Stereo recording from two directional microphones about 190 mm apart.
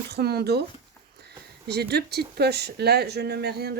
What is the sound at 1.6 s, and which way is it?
Speech, 60° right (ahead or behind).